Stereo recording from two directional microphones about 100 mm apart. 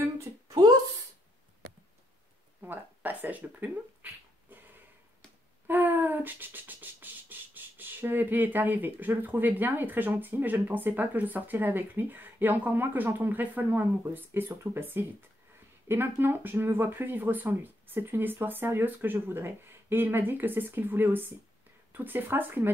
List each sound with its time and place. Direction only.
2.6 s a sound: 15° right (ahead or behind)
5.7 s beatboxing: 20° right (ahead or behind)
15.9 s speech: 20° right (ahead or behind)